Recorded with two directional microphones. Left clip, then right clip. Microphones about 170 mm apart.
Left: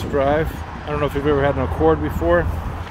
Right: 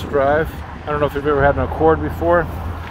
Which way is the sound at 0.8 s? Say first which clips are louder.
Right 2 dB; 20° left (ahead or behind).